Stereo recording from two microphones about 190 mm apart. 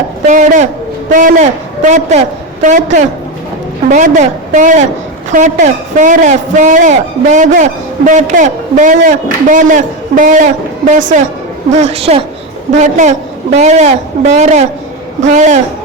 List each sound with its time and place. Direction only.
0.3 s a man's voice: 40° right (ahead or behind)